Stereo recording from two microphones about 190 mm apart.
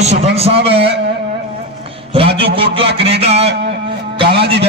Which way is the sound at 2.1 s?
30° right (ahead or behind).